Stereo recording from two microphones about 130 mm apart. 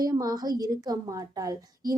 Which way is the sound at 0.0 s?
30° right (ahead or behind).